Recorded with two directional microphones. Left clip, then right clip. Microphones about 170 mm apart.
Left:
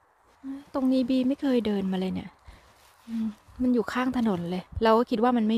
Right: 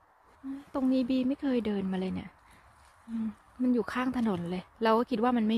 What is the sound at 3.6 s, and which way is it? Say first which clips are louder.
A woman's voice: left 4 dB; 20° left (ahead or behind).